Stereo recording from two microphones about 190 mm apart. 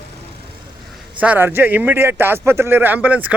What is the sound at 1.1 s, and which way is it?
Speech, 10° right (ahead or behind).